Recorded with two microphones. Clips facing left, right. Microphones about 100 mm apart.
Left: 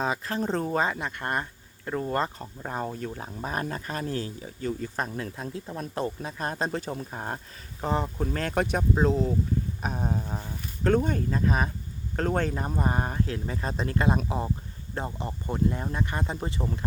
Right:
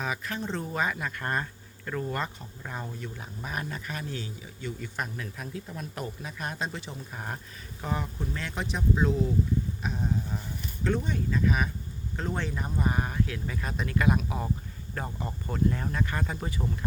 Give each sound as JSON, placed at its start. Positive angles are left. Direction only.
{"t": 0.0, "sound": "speech", "side_deg": 30}
{"t": 0.9, "sound": "speech", "side_deg": 25}
{"t": 7.8, "sound": "speech", "side_deg": 30}
{"t": 8.2, "sound": "speech", "side_deg": 50}
{"t": 9.0, "sound": "speech", "side_deg": 35}
{"t": 9.8, "sound": "speech", "side_deg": 45}
{"t": 12.1, "sound": "speech", "side_deg": 50}